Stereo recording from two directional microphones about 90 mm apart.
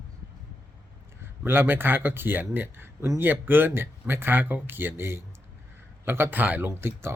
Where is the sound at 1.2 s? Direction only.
25° right (ahead or behind).